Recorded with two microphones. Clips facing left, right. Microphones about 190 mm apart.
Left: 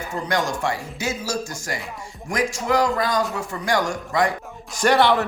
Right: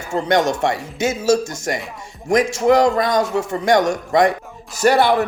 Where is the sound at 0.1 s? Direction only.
20° right (ahead or behind).